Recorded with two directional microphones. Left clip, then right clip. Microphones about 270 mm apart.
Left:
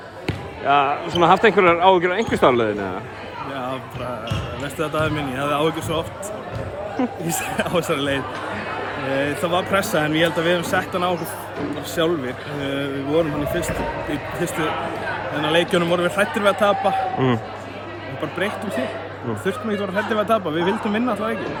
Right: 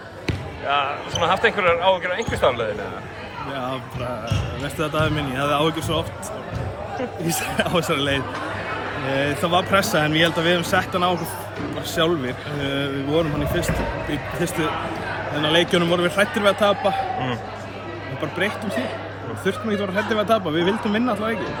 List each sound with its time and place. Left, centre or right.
0.7 s speech: left
4.8 s speech: centre
7.6 s speech: centre
15.4 s speech: centre
18.2 s speech: centre